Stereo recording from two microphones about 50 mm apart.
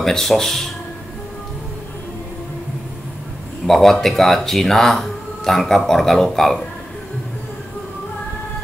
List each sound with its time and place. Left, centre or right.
0.0 s speech: centre
3.6 s speech: centre